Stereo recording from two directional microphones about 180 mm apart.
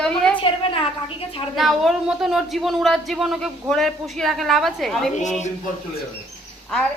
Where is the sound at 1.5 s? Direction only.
Centre (ahead or behind).